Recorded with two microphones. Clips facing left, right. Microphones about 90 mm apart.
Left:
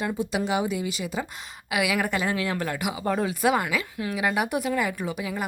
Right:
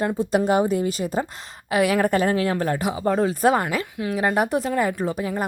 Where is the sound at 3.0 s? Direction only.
20° right (ahead or behind).